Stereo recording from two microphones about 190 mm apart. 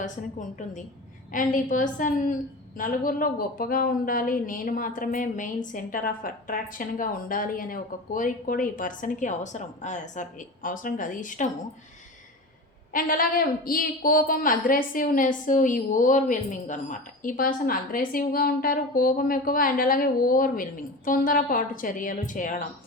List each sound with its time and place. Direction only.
0.0 s a woman's voice: 40° left (ahead or behind)
12.9 s a woman's voice: 45° left (ahead or behind)